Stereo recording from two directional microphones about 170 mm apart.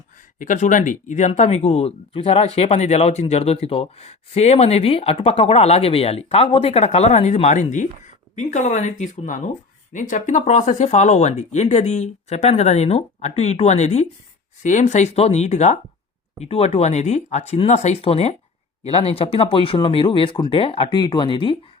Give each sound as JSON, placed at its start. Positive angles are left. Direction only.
{"t": 0.3, "sound": "speech", "side_deg": 45}